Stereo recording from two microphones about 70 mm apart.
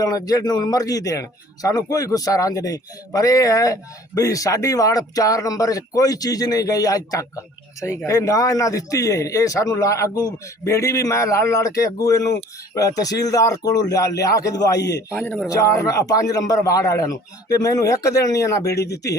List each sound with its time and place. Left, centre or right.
0.0 s speech: left
15.1 s speech: left
15.8 s speech: left